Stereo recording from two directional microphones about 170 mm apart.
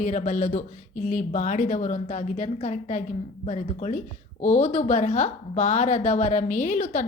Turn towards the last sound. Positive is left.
turn(degrees=45)  # may be behind; listen again after turning